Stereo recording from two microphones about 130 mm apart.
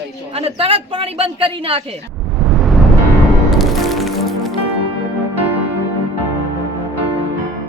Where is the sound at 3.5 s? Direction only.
Centre (ahead or behind).